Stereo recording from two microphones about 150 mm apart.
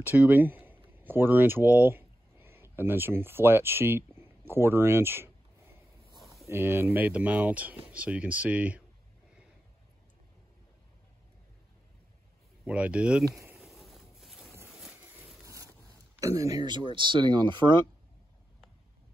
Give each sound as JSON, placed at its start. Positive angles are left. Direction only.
{"t": 0.0, "sound": "speech", "side_deg": -15}
{"t": 6.5, "sound": "speech", "side_deg": -15}
{"t": 12.6, "sound": "speech", "side_deg": -10}
{"t": 13.6, "sound": "boat", "side_deg": 0}
{"t": 16.2, "sound": "speech", "side_deg": -20}